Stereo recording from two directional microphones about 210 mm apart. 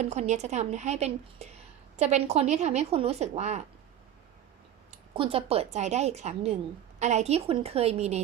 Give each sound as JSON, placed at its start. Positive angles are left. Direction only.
{"t": 0.0, "sound": "a woman's voice", "side_deg": -35}
{"t": 4.9, "sound": "a woman's voice", "side_deg": -25}